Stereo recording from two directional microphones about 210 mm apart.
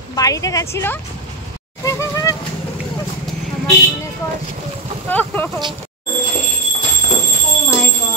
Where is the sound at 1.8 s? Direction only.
15° left (ahead or behind).